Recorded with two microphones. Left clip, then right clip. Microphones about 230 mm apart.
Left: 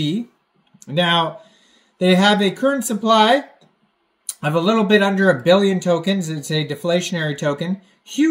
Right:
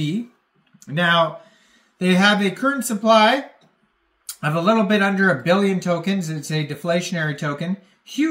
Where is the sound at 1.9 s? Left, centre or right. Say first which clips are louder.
Left 2 dB; right.